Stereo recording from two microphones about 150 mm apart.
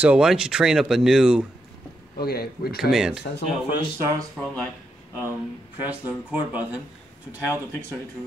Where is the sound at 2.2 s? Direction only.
90° left.